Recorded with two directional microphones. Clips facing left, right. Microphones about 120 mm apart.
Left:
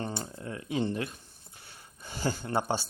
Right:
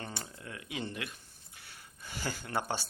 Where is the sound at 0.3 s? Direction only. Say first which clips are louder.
Left 10 dB; 35° left (ahead or behind).